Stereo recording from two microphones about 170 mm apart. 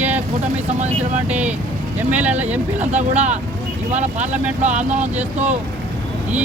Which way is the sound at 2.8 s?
40° right (ahead or behind).